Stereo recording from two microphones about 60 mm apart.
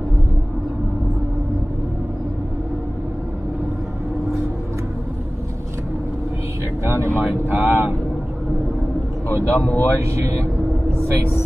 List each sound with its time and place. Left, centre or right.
7.2 s speech: right
9.5 s speech: left
9.8 s speech: right